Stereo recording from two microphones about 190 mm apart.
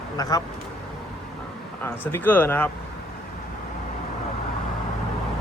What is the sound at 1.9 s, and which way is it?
Speech, 10° left (ahead or behind).